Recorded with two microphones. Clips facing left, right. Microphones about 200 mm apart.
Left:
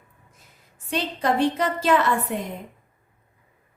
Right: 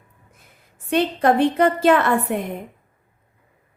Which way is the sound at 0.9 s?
55° right (ahead or behind).